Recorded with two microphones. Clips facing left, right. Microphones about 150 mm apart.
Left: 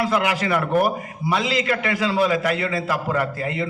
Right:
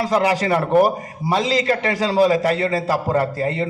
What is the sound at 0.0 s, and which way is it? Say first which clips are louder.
A man's voice: right 3 dB; 35° right (ahead or behind).